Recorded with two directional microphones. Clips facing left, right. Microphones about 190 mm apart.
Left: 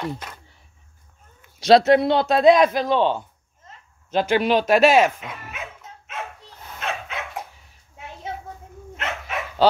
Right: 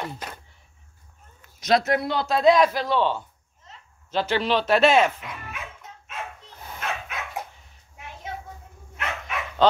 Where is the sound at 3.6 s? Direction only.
50° left (ahead or behind).